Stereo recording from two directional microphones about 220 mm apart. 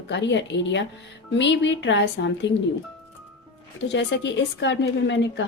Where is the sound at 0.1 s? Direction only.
55° left (ahead or behind).